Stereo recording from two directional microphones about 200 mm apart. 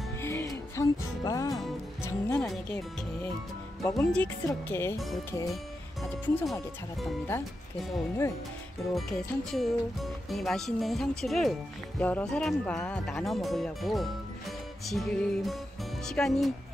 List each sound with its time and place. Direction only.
0.2 s music: 15° left (ahead or behind)
3.8 s speech: 15° left (ahead or behind)
6.2 s speech: 10° left (ahead or behind)
8.9 s speech: centre (ahead or behind)